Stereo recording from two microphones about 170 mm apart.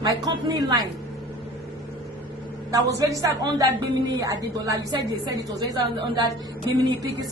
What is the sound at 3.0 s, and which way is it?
A woman's voice, 20° right (ahead or behind).